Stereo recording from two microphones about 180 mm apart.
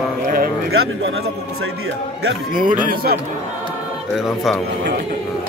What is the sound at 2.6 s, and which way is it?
Speech, 55° right (ahead or behind).